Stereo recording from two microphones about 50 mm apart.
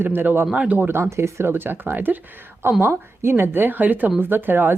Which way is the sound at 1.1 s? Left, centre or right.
Right.